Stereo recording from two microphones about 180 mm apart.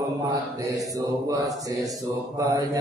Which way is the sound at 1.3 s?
20° right (ahead or behind).